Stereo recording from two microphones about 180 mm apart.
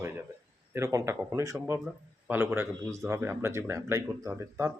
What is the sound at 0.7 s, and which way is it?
Speech, 15° right (ahead or behind).